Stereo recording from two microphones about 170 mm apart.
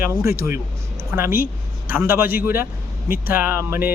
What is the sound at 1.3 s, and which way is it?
Speech, 55° left (ahead or behind).